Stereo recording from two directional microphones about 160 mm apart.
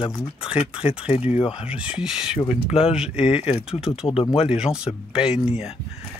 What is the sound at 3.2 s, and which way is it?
Speech, 35° left (ahead or behind).